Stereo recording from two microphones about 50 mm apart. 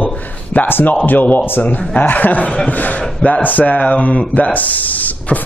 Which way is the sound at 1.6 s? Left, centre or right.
Left.